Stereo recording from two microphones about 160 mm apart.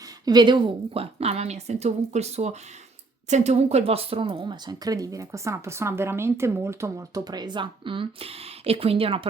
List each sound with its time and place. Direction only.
0.3 s a woman's voice: 30° right (ahead or behind)